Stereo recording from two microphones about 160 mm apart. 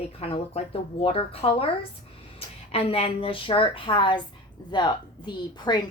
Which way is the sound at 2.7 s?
40° left (ahead or behind).